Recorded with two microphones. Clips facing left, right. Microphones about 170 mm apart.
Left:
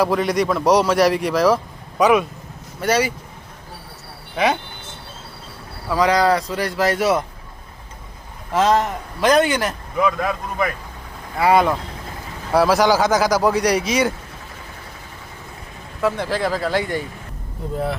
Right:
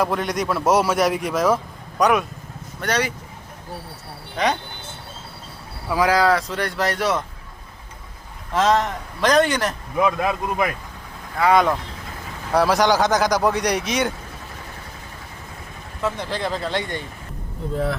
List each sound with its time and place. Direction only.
0.0 s speech: centre (ahead or behind)
4.4 s speech: 5° left (ahead or behind)
5.9 s speech: 5° right (ahead or behind)
8.5 s speech: centre (ahead or behind)
10.2 s a man's voice: 15° right (ahead or behind)
11.3 s speech: 5° left (ahead or behind)
16.0 s speech: 10° left (ahead or behind)
16.3 s speech: 20° right (ahead or behind)
16.6 s speech: 5° left (ahead or behind)